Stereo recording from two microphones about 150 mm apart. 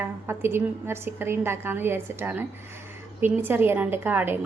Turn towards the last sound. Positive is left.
turn(degrees=-15)  # may be behind; listen again after turning